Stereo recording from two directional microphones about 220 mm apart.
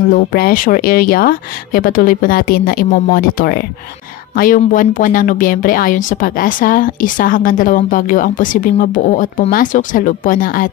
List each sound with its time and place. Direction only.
0.1 s speech: 40° left (ahead or behind)